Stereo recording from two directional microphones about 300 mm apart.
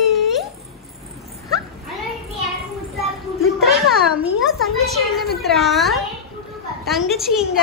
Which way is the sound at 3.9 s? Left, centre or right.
Right.